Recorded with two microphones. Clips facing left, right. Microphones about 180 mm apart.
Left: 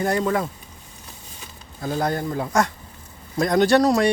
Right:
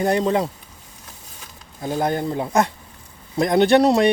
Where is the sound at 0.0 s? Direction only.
25° right (ahead or behind).